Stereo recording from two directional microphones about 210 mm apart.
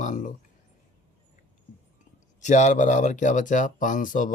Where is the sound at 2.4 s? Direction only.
35° left (ahead or behind).